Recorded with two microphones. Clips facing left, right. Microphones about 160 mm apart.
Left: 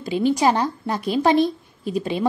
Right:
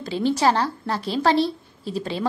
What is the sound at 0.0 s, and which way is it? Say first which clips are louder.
A woman's voice: left 2 dB; 15° left (ahead or behind).